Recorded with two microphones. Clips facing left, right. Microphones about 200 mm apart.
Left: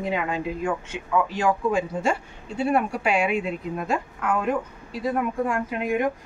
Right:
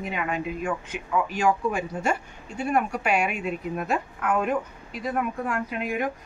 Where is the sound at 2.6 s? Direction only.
30° left (ahead or behind).